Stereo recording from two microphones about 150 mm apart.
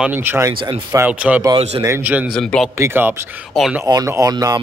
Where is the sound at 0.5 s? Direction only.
35° right (ahead or behind).